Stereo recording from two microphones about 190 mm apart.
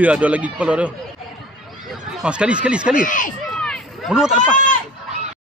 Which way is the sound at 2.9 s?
45° left (ahead or behind).